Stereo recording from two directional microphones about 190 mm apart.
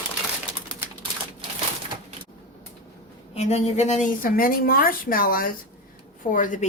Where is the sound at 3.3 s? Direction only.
35° left (ahead or behind).